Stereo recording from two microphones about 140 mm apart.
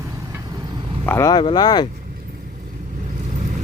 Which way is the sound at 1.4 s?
35° left (ahead or behind).